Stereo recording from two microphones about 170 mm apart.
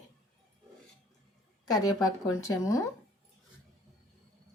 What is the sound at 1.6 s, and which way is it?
Speech, 20° left (ahead or behind).